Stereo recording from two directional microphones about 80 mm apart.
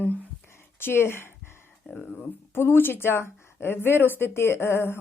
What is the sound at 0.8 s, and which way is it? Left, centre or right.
Speech, left.